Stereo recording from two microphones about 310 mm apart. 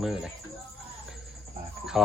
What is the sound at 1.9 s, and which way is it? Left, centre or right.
Speech, centre.